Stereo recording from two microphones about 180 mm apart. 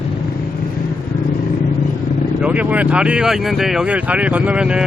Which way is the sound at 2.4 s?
10° right (ahead or behind).